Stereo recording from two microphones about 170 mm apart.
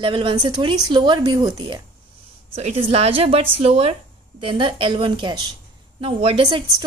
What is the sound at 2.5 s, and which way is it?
A woman's voice, 35° right (ahead or behind).